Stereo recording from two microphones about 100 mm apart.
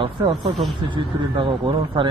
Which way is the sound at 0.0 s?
55° right (ahead or behind).